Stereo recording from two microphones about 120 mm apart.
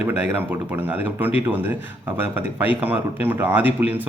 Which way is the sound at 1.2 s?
15° right (ahead or behind).